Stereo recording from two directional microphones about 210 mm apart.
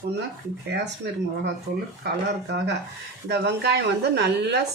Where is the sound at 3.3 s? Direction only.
50° right (ahead or behind).